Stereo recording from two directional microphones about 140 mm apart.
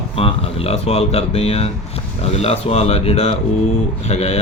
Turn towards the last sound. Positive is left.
turn(degrees=50)  # may be behind; listen again after turning